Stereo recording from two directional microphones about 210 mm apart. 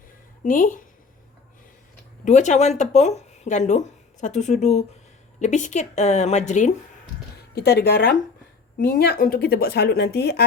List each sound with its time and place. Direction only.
0.4 s speech: 40° left (ahead or behind)
2.2 s speech: 35° left (ahead or behind)
7.5 s speech: 50° left (ahead or behind)